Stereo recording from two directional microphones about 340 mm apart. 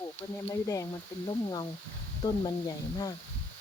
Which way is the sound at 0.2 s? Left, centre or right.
Centre.